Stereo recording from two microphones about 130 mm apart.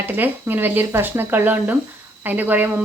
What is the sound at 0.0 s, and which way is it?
A woman's voice, 15° right (ahead or behind).